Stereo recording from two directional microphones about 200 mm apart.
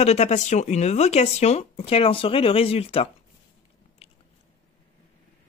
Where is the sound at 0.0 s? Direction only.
35° left (ahead or behind).